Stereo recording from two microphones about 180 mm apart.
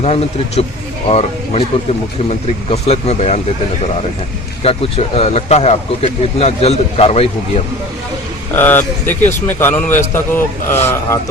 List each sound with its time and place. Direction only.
0.0 s speech: 35° left (ahead or behind)
2.6 s speech: 35° left (ahead or behind)
4.6 s speech: 30° left (ahead or behind)
8.5 s speech: 10° left (ahead or behind)